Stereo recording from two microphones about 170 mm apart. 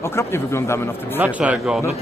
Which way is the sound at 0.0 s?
15° left (ahead or behind).